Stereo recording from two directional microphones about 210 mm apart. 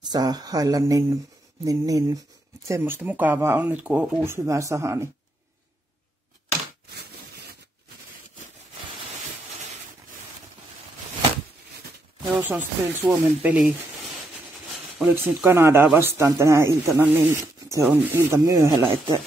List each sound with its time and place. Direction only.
0.1 s speech: 20° right (ahead or behind)
6.9 s a sound: 50° right (ahead or behind)
12.4 s speech: 5° right (ahead or behind)
15.0 s speech: 10° right (ahead or behind)